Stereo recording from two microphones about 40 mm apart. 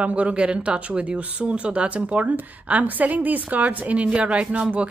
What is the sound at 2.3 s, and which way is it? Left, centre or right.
A woman's voice, right.